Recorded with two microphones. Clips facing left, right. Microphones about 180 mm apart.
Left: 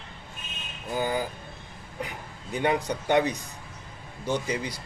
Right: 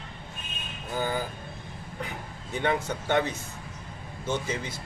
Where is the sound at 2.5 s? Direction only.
15° left (ahead or behind).